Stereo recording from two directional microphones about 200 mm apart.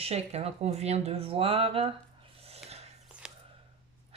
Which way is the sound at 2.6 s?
30° right (ahead or behind).